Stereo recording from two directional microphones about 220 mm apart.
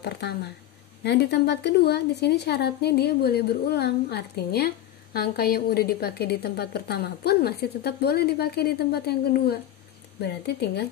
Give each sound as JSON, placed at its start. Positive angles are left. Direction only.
{"t": 0.0, "sound": "a woman's voice", "side_deg": 50}